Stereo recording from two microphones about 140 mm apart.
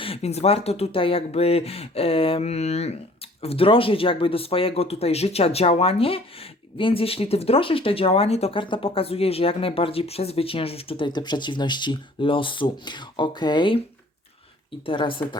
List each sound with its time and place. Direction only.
0.0 s speech: 45° left (ahead or behind)
14.8 s speech: 40° left (ahead or behind)